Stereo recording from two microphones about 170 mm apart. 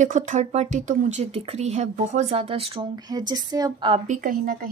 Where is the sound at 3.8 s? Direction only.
35° right (ahead or behind).